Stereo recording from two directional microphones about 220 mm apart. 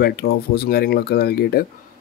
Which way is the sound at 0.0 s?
45° left (ahead or behind).